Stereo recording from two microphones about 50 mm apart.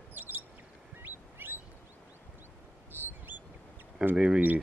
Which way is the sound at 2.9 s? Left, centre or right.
Right.